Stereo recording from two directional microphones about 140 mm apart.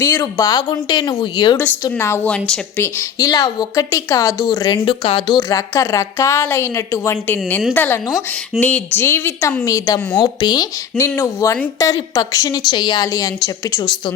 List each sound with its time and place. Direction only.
0.0 s a woman's voice: 20° left (ahead or behind)
2.0 s a woman's voice: 15° left (ahead or behind); by 5.4 s 35° left (ahead or behind)
5.4 s a woman's voice: 25° left (ahead or behind)